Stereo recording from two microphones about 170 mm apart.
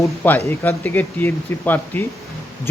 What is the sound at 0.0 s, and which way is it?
Speech, 15° left (ahead or behind).